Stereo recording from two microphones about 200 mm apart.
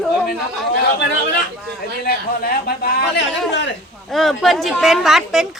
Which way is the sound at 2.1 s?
50° left (ahead or behind).